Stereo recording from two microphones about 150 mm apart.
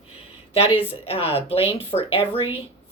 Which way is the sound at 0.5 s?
40° left (ahead or behind).